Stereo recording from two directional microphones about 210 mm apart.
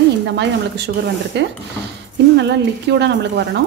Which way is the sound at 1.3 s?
55° right (ahead or behind).